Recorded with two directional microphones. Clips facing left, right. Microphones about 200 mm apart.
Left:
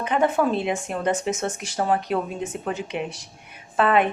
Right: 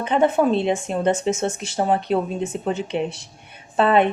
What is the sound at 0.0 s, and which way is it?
A woman's voice, 25° right (ahead or behind).